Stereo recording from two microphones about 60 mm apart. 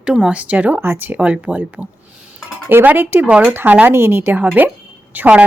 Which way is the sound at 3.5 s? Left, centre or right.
Right.